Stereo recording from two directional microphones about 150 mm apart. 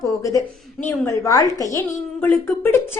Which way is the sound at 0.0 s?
20° left (ahead or behind).